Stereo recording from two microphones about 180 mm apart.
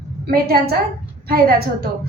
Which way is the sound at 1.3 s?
55° right (ahead or behind).